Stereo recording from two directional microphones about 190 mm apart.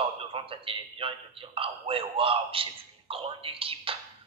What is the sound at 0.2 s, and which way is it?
A man's voice, 30° right (ahead or behind).